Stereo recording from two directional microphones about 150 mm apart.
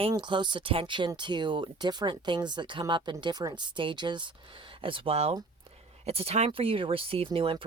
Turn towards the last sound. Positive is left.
turn(degrees=-40)  # may be behind; listen again after turning